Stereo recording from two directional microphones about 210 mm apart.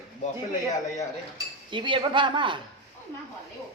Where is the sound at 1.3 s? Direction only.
25° right (ahead or behind).